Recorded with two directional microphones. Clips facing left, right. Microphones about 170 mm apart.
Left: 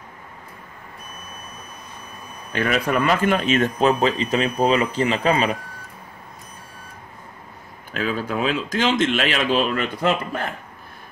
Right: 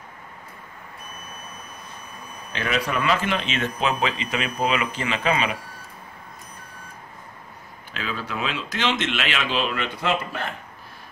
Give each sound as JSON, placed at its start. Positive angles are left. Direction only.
{"t": 2.5, "sound": "a man's voice", "side_deg": 45}
{"t": 7.9, "sound": "speech", "side_deg": 45}